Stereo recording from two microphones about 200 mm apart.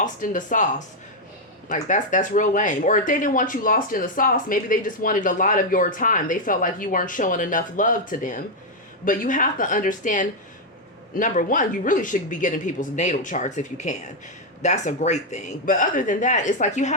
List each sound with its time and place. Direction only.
0.0 s speech: 40° left (ahead or behind)
1.7 s speech: 40° left (ahead or behind)